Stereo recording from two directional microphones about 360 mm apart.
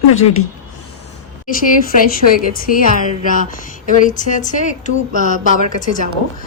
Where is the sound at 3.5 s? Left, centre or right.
Left.